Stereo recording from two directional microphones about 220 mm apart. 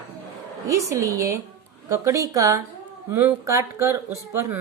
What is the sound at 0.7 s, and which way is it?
A woman's voice, 15° right (ahead or behind).